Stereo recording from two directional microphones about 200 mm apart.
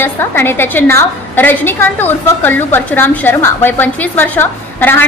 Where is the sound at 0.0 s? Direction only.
10° left (ahead or behind).